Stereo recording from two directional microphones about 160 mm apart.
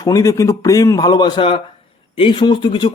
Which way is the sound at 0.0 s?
20° left (ahead or behind).